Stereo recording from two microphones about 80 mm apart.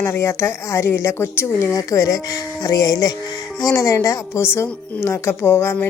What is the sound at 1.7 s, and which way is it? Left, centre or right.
A woman's voice, left.